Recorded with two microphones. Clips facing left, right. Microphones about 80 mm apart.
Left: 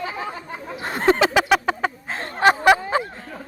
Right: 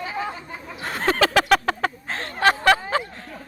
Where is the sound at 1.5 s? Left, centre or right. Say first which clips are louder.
Even; centre.